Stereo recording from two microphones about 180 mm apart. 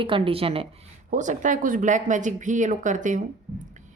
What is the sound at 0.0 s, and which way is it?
Speech, 30° right (ahead or behind).